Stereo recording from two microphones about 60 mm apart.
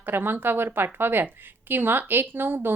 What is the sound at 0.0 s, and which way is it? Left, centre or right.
A woman's voice, right.